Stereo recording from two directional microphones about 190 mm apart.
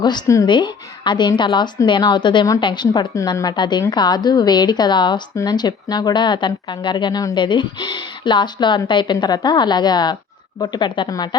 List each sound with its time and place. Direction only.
0.0 s a woman's voice: 20° left (ahead or behind)